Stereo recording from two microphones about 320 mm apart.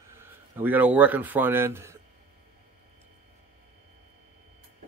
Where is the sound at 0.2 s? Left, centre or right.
Centre.